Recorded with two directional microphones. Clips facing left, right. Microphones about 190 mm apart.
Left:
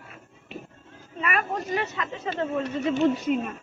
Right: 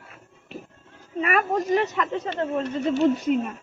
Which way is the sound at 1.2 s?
40° right (ahead or behind).